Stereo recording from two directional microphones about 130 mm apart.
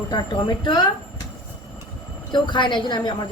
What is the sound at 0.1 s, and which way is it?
Speech, 35° left (ahead or behind).